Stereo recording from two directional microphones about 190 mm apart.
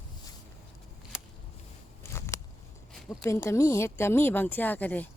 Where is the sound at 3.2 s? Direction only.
15° left (ahead or behind).